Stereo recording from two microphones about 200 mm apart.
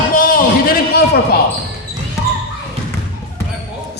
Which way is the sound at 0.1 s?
45° left (ahead or behind).